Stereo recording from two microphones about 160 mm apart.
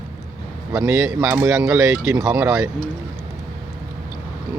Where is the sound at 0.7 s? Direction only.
15° right (ahead or behind).